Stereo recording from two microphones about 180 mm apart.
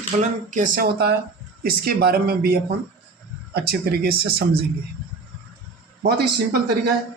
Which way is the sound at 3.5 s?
60° right (ahead or behind).